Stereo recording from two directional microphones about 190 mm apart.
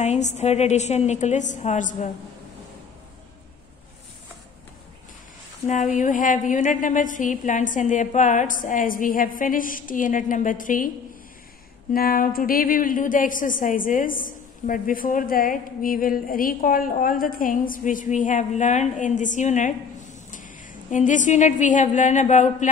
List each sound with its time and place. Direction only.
0.0 s a woman's voice: 35° left (ahead or behind)
5.7 s a woman's voice: 40° left (ahead or behind)
11.9 s a woman's voice: 50° left (ahead or behind)